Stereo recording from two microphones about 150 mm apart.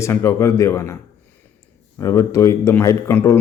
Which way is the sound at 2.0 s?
20° left (ahead or behind).